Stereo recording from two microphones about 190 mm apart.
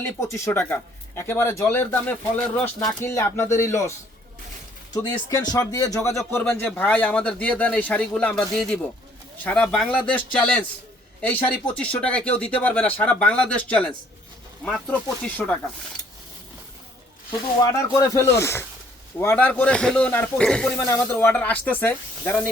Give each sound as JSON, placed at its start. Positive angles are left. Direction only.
{"t": 0.0, "sound": "speech", "side_deg": 15}
{"t": 4.9, "sound": "speech", "side_deg": 20}
{"t": 17.7, "sound": "speech", "side_deg": 15}